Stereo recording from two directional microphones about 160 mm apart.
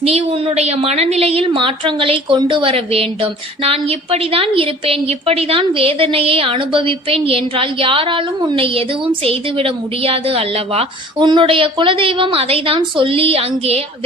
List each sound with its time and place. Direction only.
0.0 s a woman's voice: 40° right (ahead or behind)